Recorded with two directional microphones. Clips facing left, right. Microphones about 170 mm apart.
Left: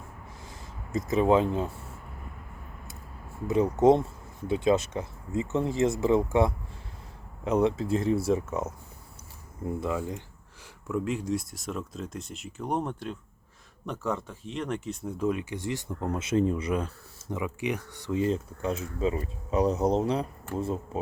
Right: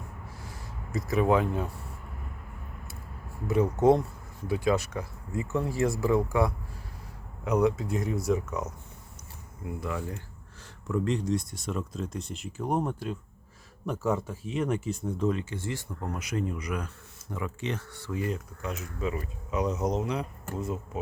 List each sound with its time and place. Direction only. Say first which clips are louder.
0.4 s speech: right 1 dB; 20° left (ahead or behind)
3.4 s speech: left 1 dB; 20° left (ahead or behind)
9.8 s speech: left 2 dB; 20° left (ahead or behind)
10.8 s speech: right 1 dB; 5° left (ahead or behind)
15.0 s speech: left 2 dB; 10° left (ahead or behind); by 21.0 s 30° left (ahead or behind)